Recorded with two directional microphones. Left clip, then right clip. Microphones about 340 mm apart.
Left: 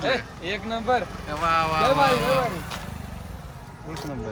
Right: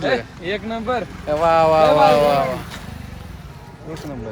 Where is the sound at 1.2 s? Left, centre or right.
Centre.